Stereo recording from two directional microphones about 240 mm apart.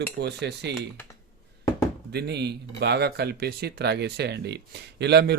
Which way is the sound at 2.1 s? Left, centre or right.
Right.